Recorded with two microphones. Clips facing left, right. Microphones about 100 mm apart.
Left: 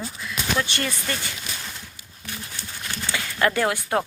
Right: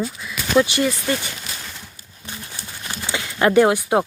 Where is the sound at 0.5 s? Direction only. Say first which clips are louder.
Right 12 dB; 15° right (ahead or behind).